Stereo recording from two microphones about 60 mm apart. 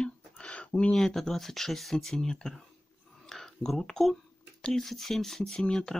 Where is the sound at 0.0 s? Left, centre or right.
Centre.